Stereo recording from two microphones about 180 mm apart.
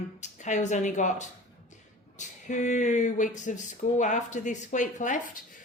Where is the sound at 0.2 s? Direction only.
40° left (ahead or behind).